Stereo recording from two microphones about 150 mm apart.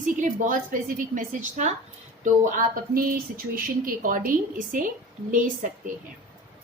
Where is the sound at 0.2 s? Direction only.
60° right (ahead or behind).